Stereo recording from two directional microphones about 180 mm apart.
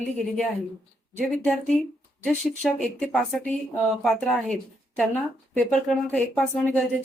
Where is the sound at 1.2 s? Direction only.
5° left (ahead or behind).